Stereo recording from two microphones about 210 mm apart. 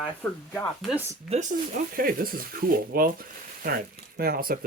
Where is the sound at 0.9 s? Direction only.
10° right (ahead or behind).